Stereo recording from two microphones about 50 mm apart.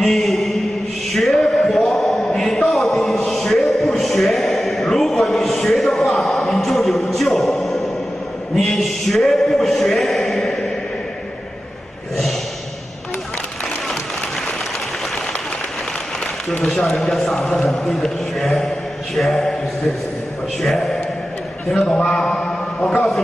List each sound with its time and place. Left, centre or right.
0.0 s mantra: centre
1.1 s a sound: centre
16.6 s a man's voice: centre
20.6 s a man's voice: centre
21.7 s a man's voice: centre